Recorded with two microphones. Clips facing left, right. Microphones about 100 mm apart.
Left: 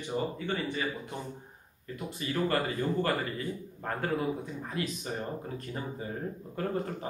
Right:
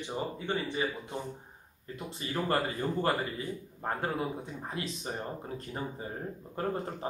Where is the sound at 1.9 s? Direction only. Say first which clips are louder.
Left 2 dB; 30° right (ahead or behind).